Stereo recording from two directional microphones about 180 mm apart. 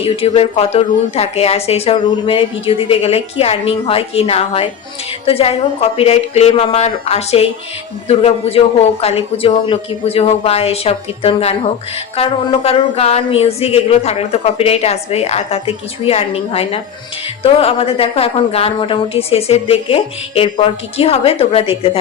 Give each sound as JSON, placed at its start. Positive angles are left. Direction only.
{"t": 0.0, "sound": "a woman's voice", "side_deg": 30}